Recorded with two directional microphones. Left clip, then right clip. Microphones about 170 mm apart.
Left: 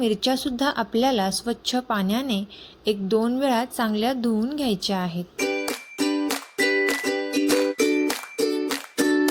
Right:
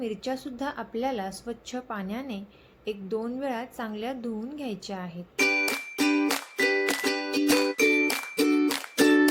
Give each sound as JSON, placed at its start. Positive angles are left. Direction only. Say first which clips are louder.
{"t": 0.0, "sound": "speech", "louder": "left 9 dB", "side_deg": 50}
{"t": 5.4, "sound": "music", "louder": "right 2 dB", "side_deg": 5}